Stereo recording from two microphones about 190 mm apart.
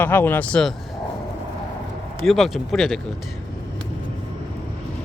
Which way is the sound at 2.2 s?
Centre (ahead or behind).